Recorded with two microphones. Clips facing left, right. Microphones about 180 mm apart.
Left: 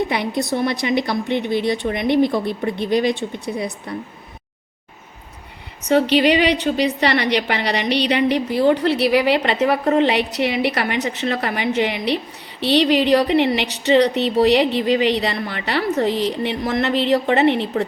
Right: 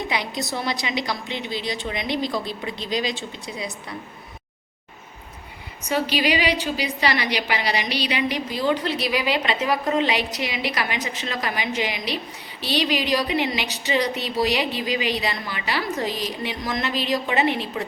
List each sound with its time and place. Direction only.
0.1 s a woman's voice: 60° left (ahead or behind)
6.1 s a woman's voice: 60° left (ahead or behind)